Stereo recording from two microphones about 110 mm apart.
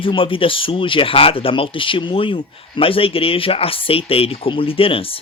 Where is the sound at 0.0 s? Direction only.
55° left (ahead or behind).